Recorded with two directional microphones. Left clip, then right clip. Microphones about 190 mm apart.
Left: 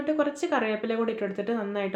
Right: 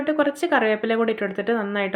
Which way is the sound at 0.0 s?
30° right (ahead or behind).